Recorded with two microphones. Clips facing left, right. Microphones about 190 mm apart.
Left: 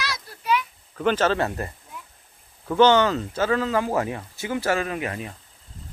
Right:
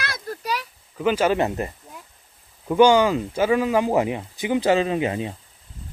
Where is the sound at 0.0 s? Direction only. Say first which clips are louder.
Right 2 dB; 50° right (ahead or behind).